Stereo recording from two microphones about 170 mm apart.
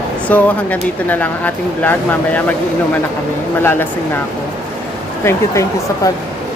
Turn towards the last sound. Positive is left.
turn(degrees=15)  # may be behind; listen again after turning